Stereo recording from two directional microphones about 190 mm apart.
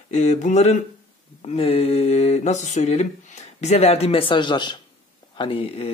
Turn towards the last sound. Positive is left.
turn(degrees=30)  # may be behind; listen again after turning